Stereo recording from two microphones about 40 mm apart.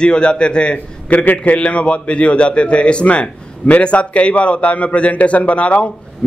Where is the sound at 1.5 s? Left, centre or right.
Left.